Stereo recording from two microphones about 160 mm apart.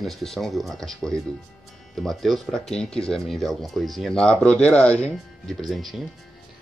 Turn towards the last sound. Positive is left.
turn(degrees=0)  # may be behind; listen again after turning